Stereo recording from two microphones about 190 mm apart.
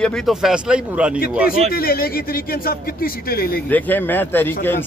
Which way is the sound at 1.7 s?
50° left (ahead or behind).